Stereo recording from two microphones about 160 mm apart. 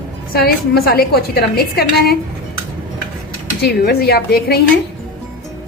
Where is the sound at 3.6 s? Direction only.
85° left.